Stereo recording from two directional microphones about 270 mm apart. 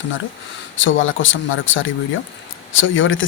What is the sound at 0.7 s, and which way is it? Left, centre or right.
Speech, left.